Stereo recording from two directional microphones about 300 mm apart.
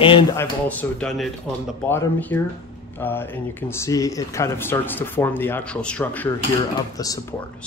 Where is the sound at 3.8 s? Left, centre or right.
Centre.